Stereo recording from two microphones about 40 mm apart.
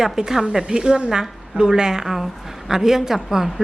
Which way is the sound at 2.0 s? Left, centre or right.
Centre.